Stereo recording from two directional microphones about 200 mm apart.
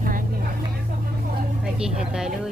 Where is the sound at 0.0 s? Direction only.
45° right (ahead or behind).